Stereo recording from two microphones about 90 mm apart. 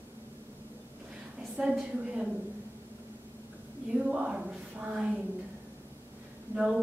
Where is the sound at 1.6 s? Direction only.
10° right (ahead or behind).